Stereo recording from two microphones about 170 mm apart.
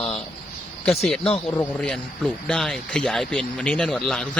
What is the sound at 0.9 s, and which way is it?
Speech, centre (ahead or behind).